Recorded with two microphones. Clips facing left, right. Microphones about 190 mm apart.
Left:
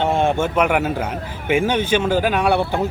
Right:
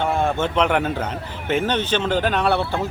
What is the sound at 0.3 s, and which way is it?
Speech, 10° left (ahead or behind).